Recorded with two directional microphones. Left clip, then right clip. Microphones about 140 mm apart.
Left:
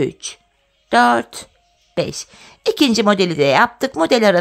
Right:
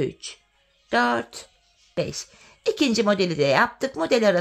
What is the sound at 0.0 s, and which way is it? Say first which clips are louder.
A woman's voice: left 7 dB; 40° left (ahead or behind).